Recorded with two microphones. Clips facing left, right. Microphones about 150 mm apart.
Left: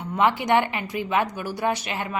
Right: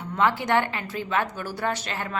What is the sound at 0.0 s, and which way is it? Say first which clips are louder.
A woman's voice: left 2 dB; 15° left (ahead or behind).